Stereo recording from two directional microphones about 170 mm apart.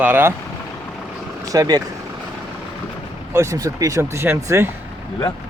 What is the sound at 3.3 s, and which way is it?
Speech, 15° right (ahead or behind).